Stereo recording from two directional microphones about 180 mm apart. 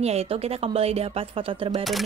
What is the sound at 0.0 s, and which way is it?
A woman's voice, 35° right (ahead or behind).